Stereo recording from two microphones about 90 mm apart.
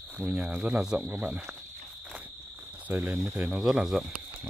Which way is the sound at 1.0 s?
20° right (ahead or behind).